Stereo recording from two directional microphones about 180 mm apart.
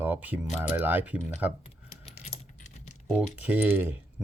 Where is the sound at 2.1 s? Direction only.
40° left (ahead or behind).